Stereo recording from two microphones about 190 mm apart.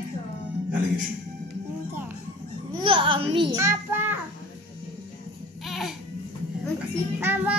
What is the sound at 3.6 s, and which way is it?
Speech, 10° right (ahead or behind).